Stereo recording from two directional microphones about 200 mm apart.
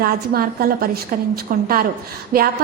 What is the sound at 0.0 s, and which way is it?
A woman's voice, 50° right (ahead or behind).